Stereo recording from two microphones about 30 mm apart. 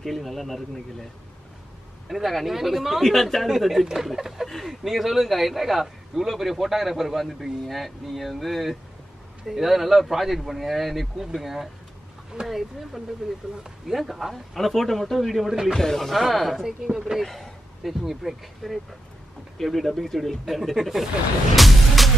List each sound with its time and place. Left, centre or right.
0.0 s a man's voice: centre
2.0 s a man's voice: centre
3.0 s a man's voice: centre
4.5 s speech: centre
4.8 s a man's voice: centre
13.2 s speech: centre
13.8 s a man's voice: centre
15.7 s speech: centre
16.1 s a man's voice: centre
17.2 s a sound: centre
18.2 s speech: centre
18.6 s a man's voice: centre
21.5 s music: centre